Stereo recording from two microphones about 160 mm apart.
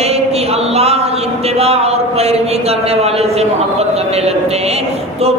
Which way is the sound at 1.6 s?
40° right (ahead or behind).